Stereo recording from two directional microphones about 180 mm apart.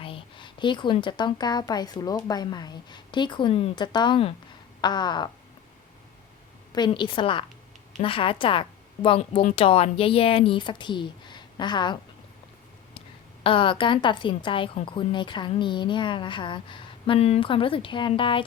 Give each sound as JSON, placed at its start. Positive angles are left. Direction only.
{"t": 0.0, "sound": "a woman's voice", "side_deg": 30}
{"t": 6.7, "sound": "a woman's voice", "side_deg": 25}
{"t": 13.4, "sound": "a woman's voice", "side_deg": 30}